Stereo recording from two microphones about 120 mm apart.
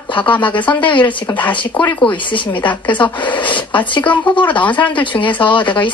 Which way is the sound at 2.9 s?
40° left (ahead or behind).